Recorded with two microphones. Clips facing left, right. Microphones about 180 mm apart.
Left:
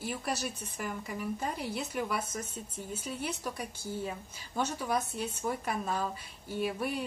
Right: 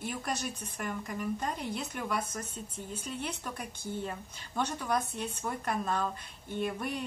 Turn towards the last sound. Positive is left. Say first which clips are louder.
# left 1 dB
turn(degrees=5)  # may be behind; listen again after turning